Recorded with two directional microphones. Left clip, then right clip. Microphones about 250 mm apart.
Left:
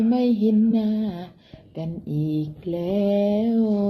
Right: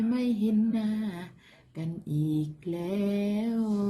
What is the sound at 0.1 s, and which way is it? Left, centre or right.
Mantra, right.